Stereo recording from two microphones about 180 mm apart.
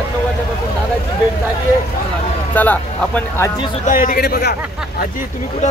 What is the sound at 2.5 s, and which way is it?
Speech, 10° left (ahead or behind).